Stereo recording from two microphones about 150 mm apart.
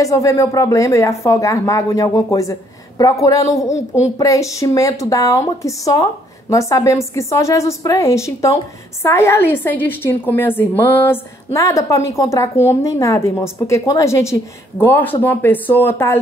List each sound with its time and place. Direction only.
0.0 s speech: 20° left (ahead or behind)
3.7 s a woman's voice: 50° left (ahead or behind)
4.2 s a woman's voice: 20° left (ahead or behind)